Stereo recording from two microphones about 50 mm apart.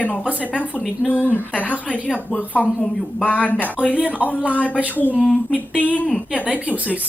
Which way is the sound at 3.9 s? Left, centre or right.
Right.